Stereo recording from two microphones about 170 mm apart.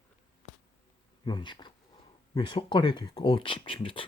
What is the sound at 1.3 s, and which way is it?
Speech, 25° left (ahead or behind).